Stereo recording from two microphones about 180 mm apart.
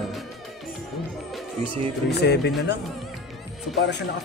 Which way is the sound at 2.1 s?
65° left (ahead or behind).